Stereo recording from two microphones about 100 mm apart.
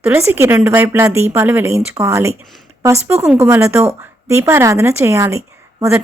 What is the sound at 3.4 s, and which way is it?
A woman's voice, 25° right (ahead or behind).